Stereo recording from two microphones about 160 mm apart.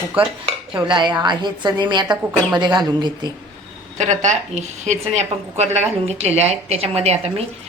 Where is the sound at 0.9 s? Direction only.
30° right (ahead or behind).